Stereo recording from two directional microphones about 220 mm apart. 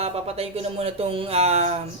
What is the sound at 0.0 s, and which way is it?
Speech, 25° right (ahead or behind).